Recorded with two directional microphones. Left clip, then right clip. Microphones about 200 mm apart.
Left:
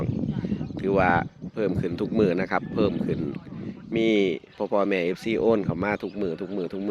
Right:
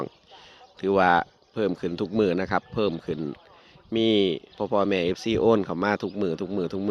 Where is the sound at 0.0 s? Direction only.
10° right (ahead or behind).